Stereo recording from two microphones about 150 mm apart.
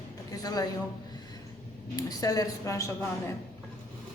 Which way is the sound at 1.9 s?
25° left (ahead or behind).